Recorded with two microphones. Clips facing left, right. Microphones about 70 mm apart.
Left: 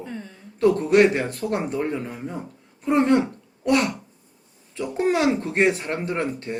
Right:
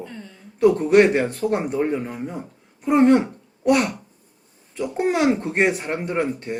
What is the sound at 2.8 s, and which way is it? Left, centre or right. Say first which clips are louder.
Throat clearing: right 3 dB; centre.